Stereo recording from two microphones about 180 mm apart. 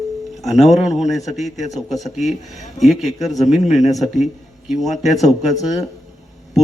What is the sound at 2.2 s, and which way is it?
Speech, 40° left (ahead or behind).